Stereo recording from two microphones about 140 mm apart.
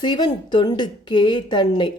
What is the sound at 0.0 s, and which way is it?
A woman's voice, 30° left (ahead or behind).